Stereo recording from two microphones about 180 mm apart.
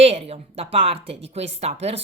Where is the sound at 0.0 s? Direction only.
35° right (ahead or behind).